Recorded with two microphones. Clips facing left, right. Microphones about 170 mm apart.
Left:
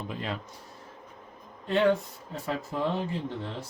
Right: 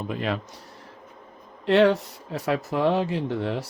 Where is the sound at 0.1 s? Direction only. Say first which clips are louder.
Right 8 dB; 75° right (ahead or behind).